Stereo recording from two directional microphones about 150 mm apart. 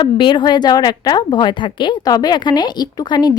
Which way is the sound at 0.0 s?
30° left (ahead or behind).